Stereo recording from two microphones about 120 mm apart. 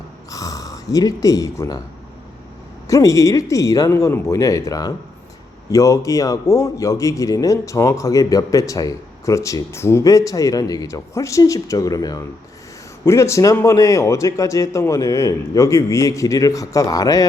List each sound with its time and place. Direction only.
0.3 s speech: 30° left (ahead or behind)
2.8 s a man's voice: 25° left (ahead or behind)